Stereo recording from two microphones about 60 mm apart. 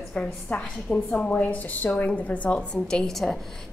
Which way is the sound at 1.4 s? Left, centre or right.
Left.